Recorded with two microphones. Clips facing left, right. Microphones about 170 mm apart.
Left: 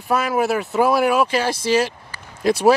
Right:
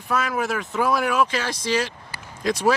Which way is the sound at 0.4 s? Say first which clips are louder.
Left 6 dB; 10° left (ahead or behind).